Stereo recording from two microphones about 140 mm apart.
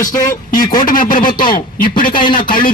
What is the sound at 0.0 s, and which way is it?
Speech, 75° left (ahead or behind).